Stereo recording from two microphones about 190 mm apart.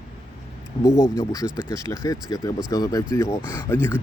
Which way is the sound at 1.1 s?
20° left (ahead or behind).